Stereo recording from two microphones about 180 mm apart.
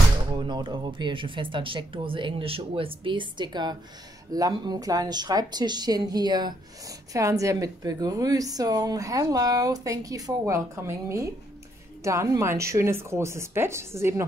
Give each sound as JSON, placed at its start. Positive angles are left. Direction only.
{"t": 0.4, "sound": "a woman's voice", "side_deg": -25}